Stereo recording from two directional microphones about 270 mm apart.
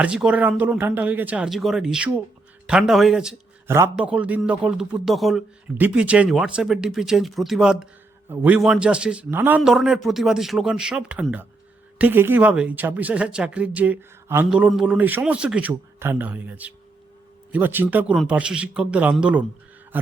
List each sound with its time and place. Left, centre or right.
0.0 s a man's voice: centre